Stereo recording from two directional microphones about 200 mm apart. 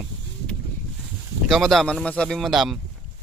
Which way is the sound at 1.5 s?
Centre (ahead or behind).